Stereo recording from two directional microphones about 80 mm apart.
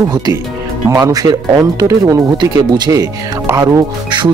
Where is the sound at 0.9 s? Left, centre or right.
Right.